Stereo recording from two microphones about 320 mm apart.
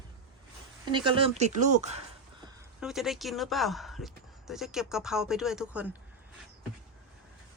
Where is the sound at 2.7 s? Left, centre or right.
Centre.